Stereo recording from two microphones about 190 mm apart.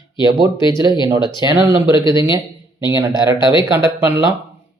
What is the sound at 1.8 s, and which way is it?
Speech, 25° left (ahead or behind).